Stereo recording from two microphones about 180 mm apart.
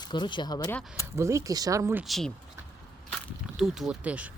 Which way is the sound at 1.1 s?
15° right (ahead or behind).